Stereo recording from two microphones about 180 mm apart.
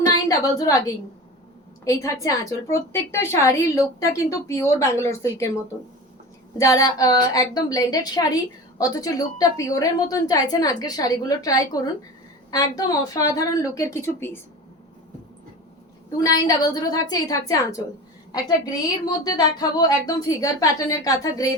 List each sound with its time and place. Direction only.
0.0 s a sound: 20° left (ahead or behind)
1.8 s a woman's voice: 15° left (ahead or behind)
6.6 s a woman's voice: 20° left (ahead or behind)
16.1 s a woman's voice: 20° left (ahead or behind)